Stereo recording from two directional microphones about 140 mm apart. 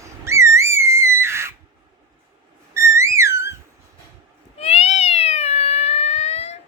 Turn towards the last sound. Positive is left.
turn(degrees=50)  # may be behind; listen again after turning